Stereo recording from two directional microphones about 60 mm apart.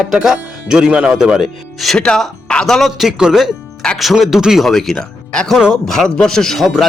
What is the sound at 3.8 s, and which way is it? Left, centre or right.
Music, centre.